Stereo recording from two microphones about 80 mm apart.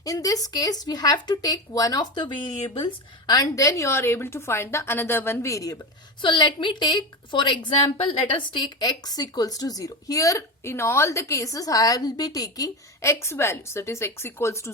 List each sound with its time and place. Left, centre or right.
0.0 s a woman's voice: left
3.5 s a woman's voice: left
6.2 s a woman's voice: left
8.4 s a woman's voice: left